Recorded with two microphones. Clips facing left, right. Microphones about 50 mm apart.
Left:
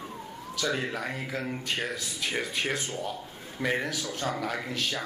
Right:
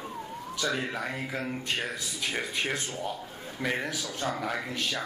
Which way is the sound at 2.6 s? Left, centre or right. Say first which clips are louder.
Left 1 dB; centre.